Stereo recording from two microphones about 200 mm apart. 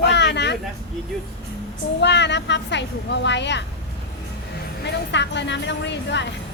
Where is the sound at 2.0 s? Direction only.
60° left (ahead or behind).